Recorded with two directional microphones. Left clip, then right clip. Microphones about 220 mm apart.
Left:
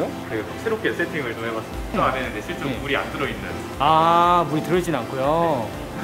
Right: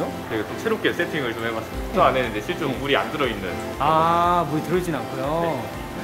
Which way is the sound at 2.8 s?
30° right (ahead or behind).